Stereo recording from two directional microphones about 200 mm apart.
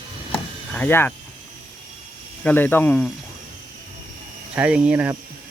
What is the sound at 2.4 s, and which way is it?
Speech, 10° left (ahead or behind).